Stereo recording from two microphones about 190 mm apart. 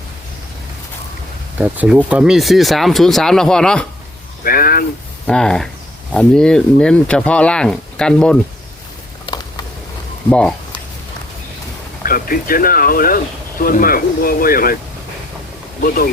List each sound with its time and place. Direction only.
1.5 s speech: 10° right (ahead or behind)
4.4 s speech: 50° left (ahead or behind)
5.2 s speech: 5° left (ahead or behind)
9.2 s a sound: 20° left (ahead or behind)
10.2 s speech: 5° left (ahead or behind)
12.0 s speech: 50° left (ahead or behind)